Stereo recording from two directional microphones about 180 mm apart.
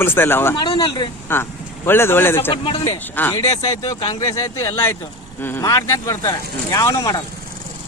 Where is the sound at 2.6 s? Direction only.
30° left (ahead or behind).